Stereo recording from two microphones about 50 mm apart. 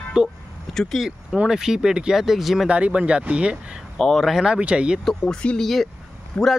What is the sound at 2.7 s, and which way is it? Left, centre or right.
Speech, right.